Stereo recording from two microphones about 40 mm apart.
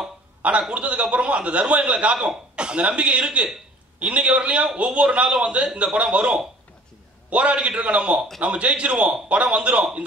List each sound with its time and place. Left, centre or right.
0.4 s a man's voice: right
2.5 s throat clearing: right
3.0 s a man's voice: right